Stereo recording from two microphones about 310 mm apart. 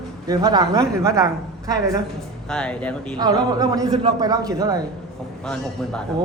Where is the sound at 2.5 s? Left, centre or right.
Centre.